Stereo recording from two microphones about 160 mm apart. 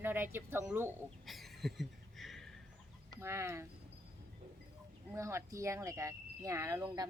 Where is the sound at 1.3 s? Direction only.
Centre (ahead or behind).